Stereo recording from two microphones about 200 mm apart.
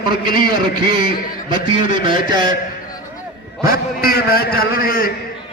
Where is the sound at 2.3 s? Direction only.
20° right (ahead or behind).